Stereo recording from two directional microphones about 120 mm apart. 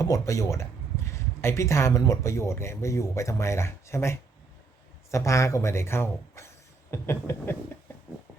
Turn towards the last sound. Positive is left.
turn(degrees=20)  # may be behind; listen again after turning